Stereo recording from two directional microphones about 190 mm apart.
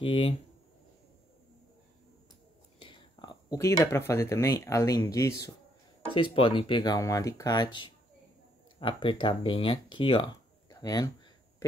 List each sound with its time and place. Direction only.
0.0 s speech: 25° left (ahead or behind)
2.8 s speech: 25° left (ahead or behind)